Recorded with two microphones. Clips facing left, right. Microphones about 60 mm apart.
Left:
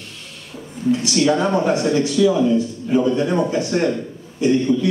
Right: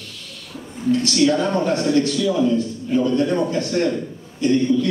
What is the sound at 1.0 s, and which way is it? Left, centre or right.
A man's voice, centre.